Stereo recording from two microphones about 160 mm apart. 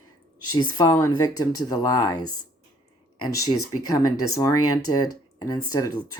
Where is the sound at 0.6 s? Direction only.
25° left (ahead or behind).